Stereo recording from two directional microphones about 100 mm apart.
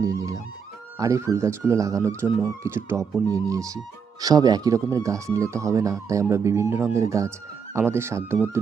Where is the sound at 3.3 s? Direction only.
35° right (ahead or behind).